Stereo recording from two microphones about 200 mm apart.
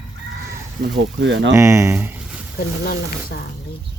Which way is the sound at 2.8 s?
50° left (ahead or behind).